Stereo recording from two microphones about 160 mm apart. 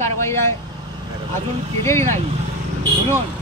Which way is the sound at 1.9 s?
15° left (ahead or behind).